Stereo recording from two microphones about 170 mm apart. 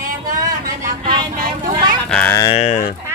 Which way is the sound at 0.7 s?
50° right (ahead or behind).